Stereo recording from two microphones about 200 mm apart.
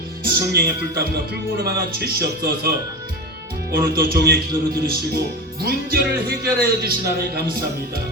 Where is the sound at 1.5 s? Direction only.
50° right (ahead or behind).